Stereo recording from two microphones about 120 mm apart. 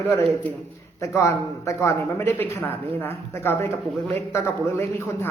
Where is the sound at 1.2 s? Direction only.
25° left (ahead or behind).